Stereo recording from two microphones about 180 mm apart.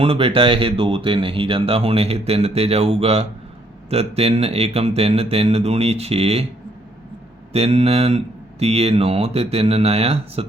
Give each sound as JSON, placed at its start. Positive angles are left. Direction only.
{"t": 0.0, "sound": "speech", "side_deg": -30}
{"t": 7.5, "sound": "speech", "side_deg": -35}